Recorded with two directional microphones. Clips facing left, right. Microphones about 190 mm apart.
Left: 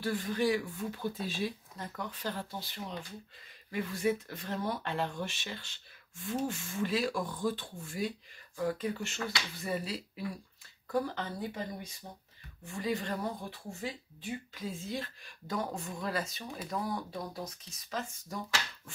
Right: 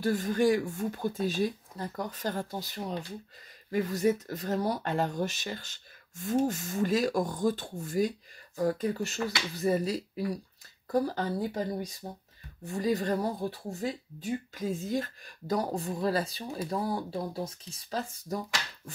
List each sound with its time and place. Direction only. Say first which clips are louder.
0.0 s speech: right 5 dB; 45° right (ahead or behind)